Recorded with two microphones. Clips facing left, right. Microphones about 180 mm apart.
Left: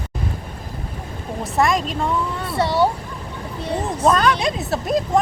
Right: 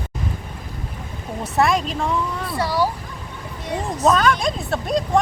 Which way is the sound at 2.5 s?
25° left (ahead or behind).